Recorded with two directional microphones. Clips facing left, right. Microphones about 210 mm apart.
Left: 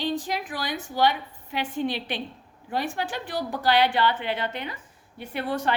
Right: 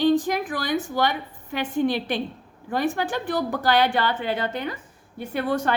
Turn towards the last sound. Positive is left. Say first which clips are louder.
# right 3 dB
turn(degrees=-45)  # may be behind; listen again after turning